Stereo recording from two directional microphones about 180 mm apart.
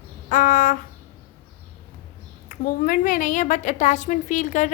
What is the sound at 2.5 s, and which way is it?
A woman's voice, 50° left (ahead or behind).